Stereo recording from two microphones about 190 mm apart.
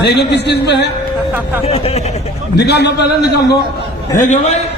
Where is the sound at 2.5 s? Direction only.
60° left (ahead or behind).